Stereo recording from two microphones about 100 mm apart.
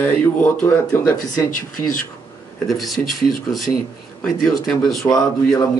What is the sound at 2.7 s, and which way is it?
Speech, centre (ahead or behind).